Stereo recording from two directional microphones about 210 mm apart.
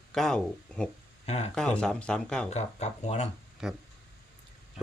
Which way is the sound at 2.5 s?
30° left (ahead or behind).